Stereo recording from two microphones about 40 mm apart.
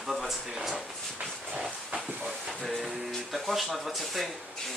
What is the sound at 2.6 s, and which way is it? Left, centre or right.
Music, centre.